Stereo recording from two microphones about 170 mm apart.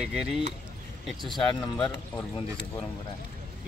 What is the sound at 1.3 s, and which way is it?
Speech, 25° left (ahead or behind).